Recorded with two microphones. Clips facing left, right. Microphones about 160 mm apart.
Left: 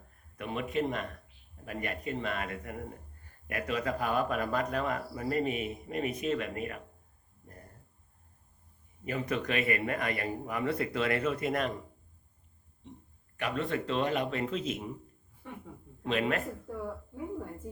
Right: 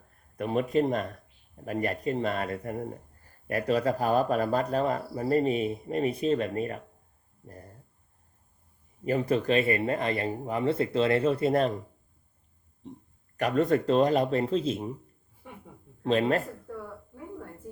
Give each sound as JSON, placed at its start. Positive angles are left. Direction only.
{"t": 0.3, "sound": "speech", "side_deg": -40}
{"t": 9.0, "sound": "speech", "side_deg": -35}
{"t": 12.8, "sound": "speech", "side_deg": -35}
{"t": 15.4, "sound": "a woman's voice", "side_deg": -10}
{"t": 16.0, "sound": "speech", "side_deg": -35}